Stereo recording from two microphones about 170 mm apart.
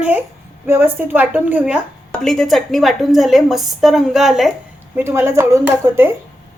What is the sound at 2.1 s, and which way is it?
A woman's voice, centre (ahead or behind).